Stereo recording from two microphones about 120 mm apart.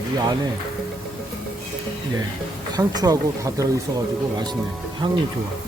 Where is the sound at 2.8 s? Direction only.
30° right (ahead or behind).